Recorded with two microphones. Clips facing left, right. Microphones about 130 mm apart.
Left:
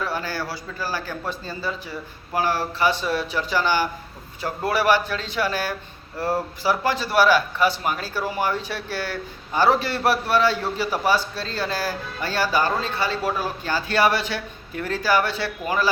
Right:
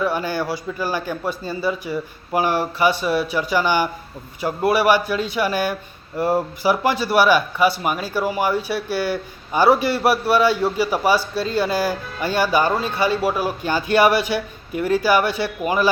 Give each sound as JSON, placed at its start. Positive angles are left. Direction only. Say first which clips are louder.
{"t": 0.0, "sound": "speech", "louder": "right 6 dB", "side_deg": -15}